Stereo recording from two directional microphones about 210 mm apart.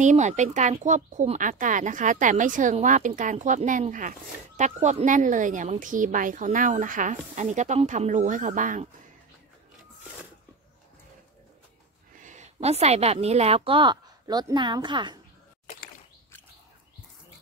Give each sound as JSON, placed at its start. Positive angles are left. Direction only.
{"t": 0.0, "sound": "speech", "side_deg": -35}
{"t": 12.2, "sound": "a woman's voice", "side_deg": -35}